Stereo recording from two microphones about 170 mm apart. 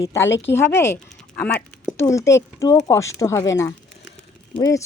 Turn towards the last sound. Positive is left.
turn(degrees=20)  # may be behind; listen again after turning